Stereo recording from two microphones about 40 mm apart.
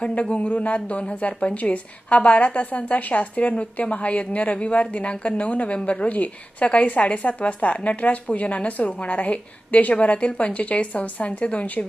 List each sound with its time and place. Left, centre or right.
0.0 s a woman's voice: left